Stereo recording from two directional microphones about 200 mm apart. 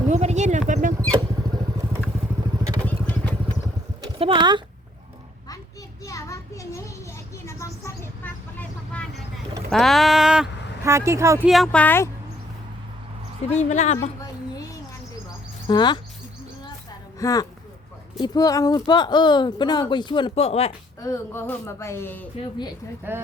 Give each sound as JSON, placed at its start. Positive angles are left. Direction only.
{"t": 0.1, "sound": "a sound", "side_deg": -35}
{"t": 0.7, "sound": "rodents", "side_deg": -40}
{"t": 2.8, "sound": "vehicle", "side_deg": 5}
{"t": 4.0, "sound": "a sound", "side_deg": -25}
{"t": 6.1, "sound": "children playing", "side_deg": 15}
{"t": 7.4, "sound": "vehicle", "side_deg": 15}
{"t": 9.6, "sound": "speech", "side_deg": 0}
{"t": 10.8, "sound": "speech", "side_deg": -15}
{"t": 11.4, "sound": "speech", "side_deg": 0}
{"t": 13.5, "sound": "a woman's voice", "side_deg": 35}
{"t": 15.6, "sound": "speech", "side_deg": 20}
{"t": 17.2, "sound": "speech", "side_deg": 15}
{"t": 21.0, "sound": "speech", "side_deg": 15}
{"t": 23.1, "sound": "speech", "side_deg": -10}